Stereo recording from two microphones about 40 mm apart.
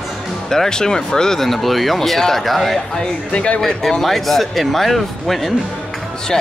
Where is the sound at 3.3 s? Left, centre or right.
Left.